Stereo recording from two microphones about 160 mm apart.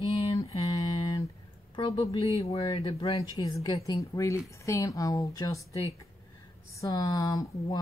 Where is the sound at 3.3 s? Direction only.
20° left (ahead or behind).